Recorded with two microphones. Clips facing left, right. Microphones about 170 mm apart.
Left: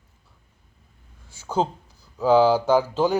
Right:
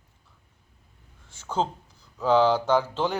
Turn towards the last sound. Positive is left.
turn(degrees=10)  # may be behind; listen again after turning